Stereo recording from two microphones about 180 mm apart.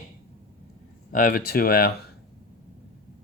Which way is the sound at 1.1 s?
50° left (ahead or behind).